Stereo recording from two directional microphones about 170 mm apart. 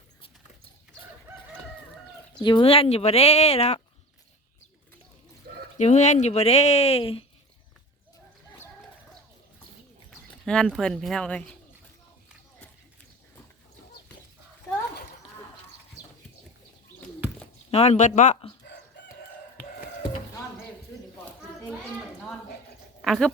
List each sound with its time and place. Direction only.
2.4 s speech: 25° left (ahead or behind)
5.7 s speech: 45° left (ahead or behind)
10.4 s speech: 5° left (ahead or behind)
17.7 s speech: 35° left (ahead or behind)
23.0 s speech: centre (ahead or behind)